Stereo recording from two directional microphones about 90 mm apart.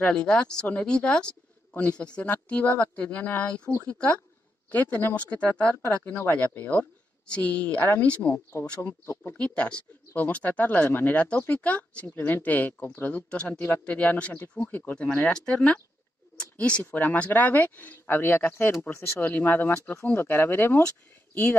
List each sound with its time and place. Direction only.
0.0 s speech: 10° left (ahead or behind)
9.0 s speech: 35° left (ahead or behind)
9.4 s speech: 15° left (ahead or behind)